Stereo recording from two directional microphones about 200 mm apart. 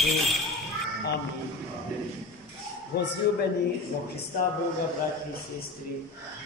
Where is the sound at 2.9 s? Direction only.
50° left (ahead or behind).